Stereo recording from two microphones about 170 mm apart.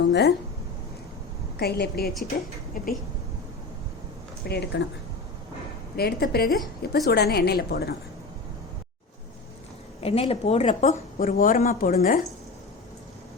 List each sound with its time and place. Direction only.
0.1 s speech: 85° left
1.5 s a woman's voice: 70° left (ahead or behind)
2.8 s a woman's voice: 55° left (ahead or behind)
4.4 s a woman's voice: 70° left (ahead or behind)
6.0 s a woman's voice: 65° left (ahead or behind)
10.0 s a woman's voice: 35° left (ahead or behind); by 12.2 s 60° left (ahead or behind)